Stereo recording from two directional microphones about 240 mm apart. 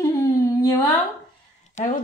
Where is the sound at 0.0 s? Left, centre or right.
Centre.